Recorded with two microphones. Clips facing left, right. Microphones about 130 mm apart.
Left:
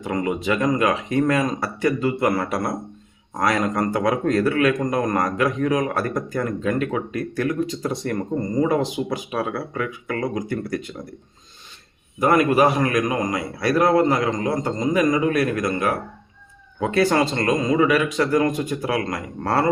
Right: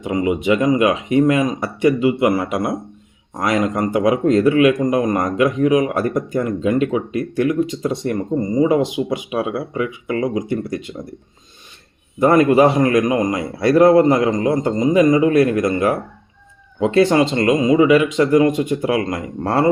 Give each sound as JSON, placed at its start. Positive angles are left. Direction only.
{"t": 0.0, "sound": "speech", "side_deg": -20}
{"t": 12.2, "sound": "speech", "side_deg": -25}